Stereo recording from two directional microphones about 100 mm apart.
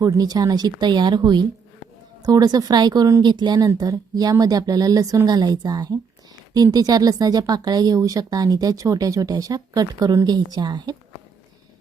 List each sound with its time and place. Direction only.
0.0 s speech: 40° right (ahead or behind)